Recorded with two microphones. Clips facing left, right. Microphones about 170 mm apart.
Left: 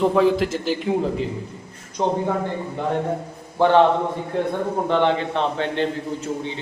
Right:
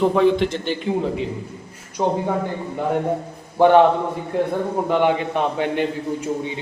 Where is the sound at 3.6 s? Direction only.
15° right (ahead or behind).